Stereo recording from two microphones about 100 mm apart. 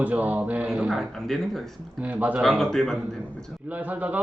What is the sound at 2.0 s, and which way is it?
Speech, 15° right (ahead or behind).